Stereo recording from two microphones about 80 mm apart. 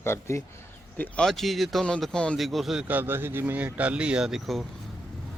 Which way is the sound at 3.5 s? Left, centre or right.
Centre.